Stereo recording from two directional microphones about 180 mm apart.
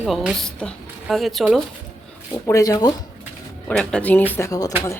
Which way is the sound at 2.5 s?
20° left (ahead or behind).